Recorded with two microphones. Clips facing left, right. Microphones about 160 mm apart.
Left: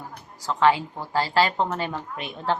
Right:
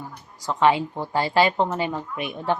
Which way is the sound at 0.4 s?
20° right (ahead or behind).